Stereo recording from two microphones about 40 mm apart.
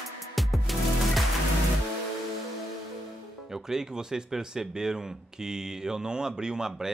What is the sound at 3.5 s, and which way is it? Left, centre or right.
Speech, centre.